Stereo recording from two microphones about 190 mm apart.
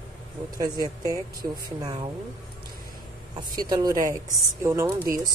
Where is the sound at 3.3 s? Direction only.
20° right (ahead or behind).